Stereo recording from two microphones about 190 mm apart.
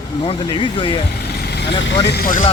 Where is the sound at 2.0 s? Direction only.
55° left (ahead or behind).